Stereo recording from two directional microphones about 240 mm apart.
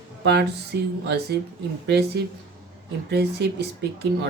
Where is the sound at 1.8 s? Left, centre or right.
Right.